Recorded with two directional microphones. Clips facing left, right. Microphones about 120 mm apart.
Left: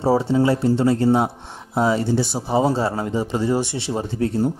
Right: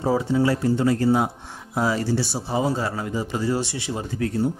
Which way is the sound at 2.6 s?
30° left (ahead or behind).